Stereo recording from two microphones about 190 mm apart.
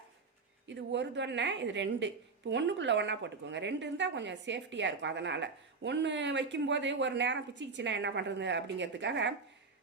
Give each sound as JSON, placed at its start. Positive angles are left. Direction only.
{"t": 0.7, "sound": "a woman's voice", "side_deg": -70}